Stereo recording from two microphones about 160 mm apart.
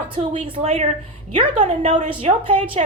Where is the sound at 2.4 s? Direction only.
35° right (ahead or behind).